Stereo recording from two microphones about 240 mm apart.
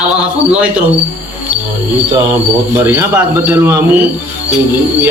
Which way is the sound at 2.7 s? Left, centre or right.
Centre.